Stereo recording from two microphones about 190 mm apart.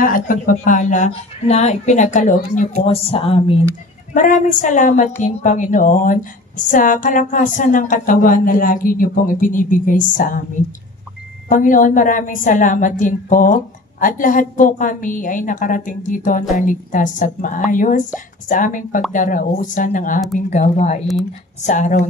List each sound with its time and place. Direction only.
0.0 s speech: 45° left (ahead or behind)
2.8 s speech: 30° left (ahead or behind)
4.1 s a woman's voice: 40° left (ahead or behind)
11.5 s a woman's voice: 45° left (ahead or behind)